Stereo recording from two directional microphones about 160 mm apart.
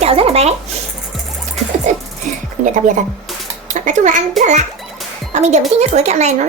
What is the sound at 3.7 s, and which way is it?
Speech, 50° right (ahead or behind).